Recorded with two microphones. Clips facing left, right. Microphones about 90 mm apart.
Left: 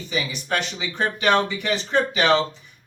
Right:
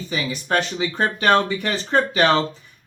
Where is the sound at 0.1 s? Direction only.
40° right (ahead or behind).